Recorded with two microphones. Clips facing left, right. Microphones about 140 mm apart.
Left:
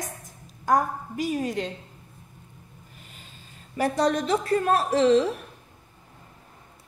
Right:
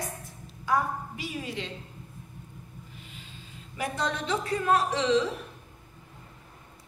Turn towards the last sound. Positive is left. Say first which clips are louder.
# left 6 dB
turn(degrees=40)  # may be behind; listen again after turning